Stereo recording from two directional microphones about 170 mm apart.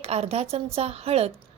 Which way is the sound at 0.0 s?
35° right (ahead or behind).